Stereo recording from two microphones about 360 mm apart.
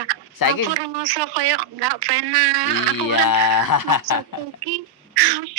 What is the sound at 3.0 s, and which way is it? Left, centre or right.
Speech, left.